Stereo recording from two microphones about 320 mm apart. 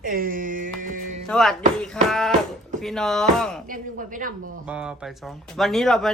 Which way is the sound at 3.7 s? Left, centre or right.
Right.